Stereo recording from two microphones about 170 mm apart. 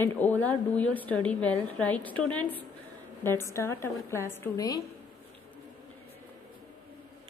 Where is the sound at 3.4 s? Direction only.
15° left (ahead or behind).